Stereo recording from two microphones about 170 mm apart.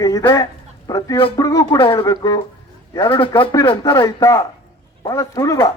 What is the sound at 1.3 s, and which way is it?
Speech, 20° left (ahead or behind).